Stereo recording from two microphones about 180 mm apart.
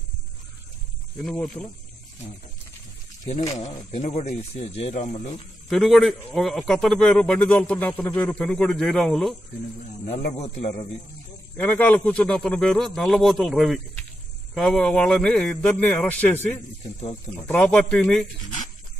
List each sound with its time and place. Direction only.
1.1 s a man's voice: 5° left (ahead or behind)
3.5 s speech: 40° left (ahead or behind)
5.7 s a man's voice: centre (ahead or behind)
10.4 s speech: 35° left (ahead or behind)
11.5 s a man's voice: 10° left (ahead or behind)